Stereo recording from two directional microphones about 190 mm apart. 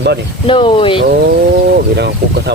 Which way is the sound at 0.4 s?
25° left (ahead or behind).